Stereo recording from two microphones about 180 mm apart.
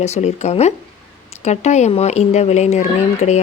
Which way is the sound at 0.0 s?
40° left (ahead or behind).